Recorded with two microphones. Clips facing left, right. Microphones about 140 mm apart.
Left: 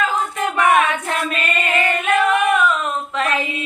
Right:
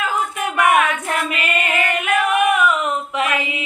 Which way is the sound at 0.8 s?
30° left (ahead or behind).